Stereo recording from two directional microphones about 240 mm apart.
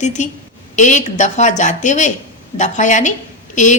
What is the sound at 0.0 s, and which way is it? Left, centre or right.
A woman's voice, left.